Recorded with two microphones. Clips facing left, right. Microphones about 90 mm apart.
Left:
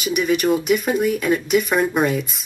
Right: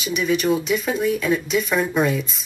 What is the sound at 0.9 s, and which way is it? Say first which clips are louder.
A woman's voice: left 2 dB; 5° left (ahead or behind).